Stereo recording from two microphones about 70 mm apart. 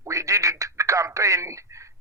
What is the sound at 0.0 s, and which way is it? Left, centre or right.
Speech, right.